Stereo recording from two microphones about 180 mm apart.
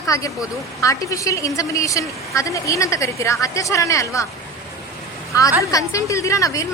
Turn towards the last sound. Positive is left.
turn(degrees=15)  # may be behind; listen again after turning